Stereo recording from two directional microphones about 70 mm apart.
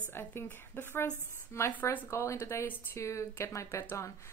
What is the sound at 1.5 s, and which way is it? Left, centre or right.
Speech, left.